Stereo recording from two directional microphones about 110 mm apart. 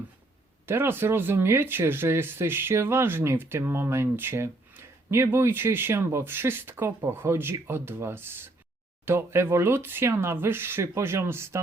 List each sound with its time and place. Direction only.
0.6 s speech: 20° right (ahead or behind)